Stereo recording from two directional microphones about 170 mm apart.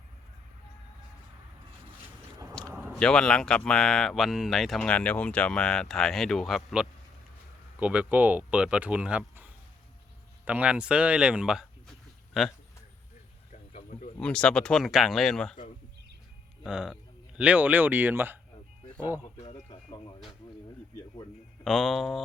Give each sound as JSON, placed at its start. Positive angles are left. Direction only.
{"t": 2.6, "sound": "a sound", "side_deg": 5}
{"t": 2.9, "sound": "speech", "side_deg": 5}
{"t": 13.5, "sound": "a sound", "side_deg": 45}
{"t": 14.2, "sound": "speech", "side_deg": 5}
{"t": 16.6, "sound": "speech", "side_deg": -5}
{"t": 21.6, "sound": "speech", "side_deg": 0}